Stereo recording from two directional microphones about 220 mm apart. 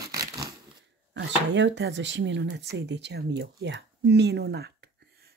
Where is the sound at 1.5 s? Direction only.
55° right (ahead or behind).